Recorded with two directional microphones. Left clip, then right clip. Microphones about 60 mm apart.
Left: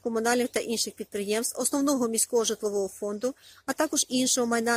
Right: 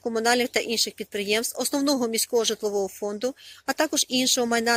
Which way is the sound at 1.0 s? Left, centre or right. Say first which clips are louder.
Right 4 dB; centre.